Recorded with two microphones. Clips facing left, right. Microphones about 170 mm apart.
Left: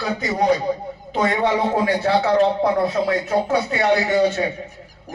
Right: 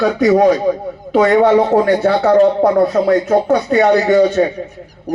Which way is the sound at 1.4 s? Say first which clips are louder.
Right 8 dB; 45° right (ahead or behind).